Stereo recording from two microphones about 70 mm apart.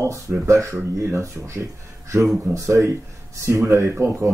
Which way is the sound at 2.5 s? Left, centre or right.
Right.